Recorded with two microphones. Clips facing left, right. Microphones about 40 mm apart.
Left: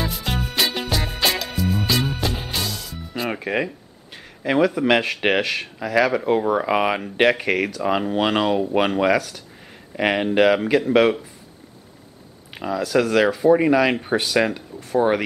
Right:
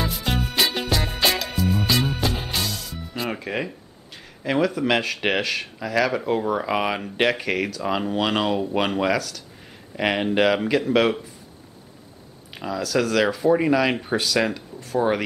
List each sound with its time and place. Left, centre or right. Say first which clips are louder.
0.0 s music: even; centre
3.3 s speech: left 4 dB; centre
12.5 s speech: left 3 dB; centre
14.0 s speech: left 2 dB; centre